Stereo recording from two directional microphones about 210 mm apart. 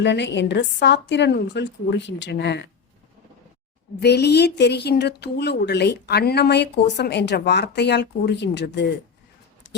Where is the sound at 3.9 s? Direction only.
50° left (ahead or behind).